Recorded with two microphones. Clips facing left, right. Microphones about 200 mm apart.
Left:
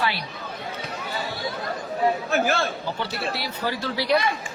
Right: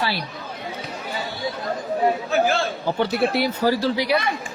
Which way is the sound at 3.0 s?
55° right (ahead or behind).